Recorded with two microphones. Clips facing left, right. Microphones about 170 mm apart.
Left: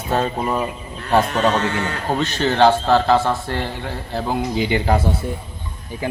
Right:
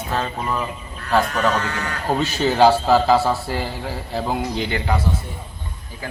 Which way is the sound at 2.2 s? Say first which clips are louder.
Even; 5° right (ahead or behind).